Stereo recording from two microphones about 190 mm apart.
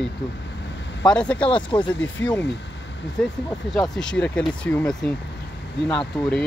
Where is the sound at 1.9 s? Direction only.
80° left.